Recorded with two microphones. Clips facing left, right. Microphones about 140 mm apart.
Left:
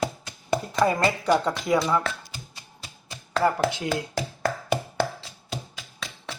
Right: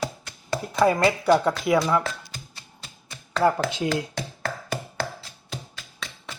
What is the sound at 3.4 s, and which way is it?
Speech, 20° right (ahead or behind).